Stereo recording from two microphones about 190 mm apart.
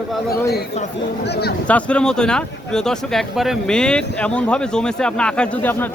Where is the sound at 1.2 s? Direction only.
60° left (ahead or behind).